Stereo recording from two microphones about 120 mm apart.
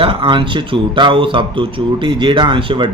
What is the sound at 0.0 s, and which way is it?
Speech, 45° right (ahead or behind).